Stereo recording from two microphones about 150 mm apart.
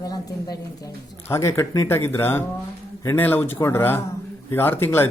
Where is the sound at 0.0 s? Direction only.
25° left (ahead or behind).